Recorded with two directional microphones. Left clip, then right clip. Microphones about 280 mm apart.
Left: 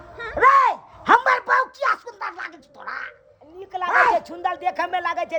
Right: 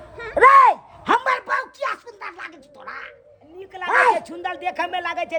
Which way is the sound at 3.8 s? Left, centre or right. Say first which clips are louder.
Right 1 dB; right.